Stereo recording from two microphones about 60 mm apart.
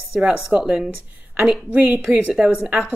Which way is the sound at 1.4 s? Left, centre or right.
Centre.